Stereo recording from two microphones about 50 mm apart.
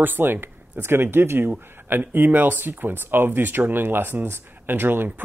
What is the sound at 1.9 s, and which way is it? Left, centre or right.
Speech, right.